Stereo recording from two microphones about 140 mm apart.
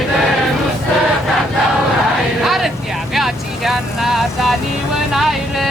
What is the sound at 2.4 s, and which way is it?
Vehicle, centre (ahead or behind).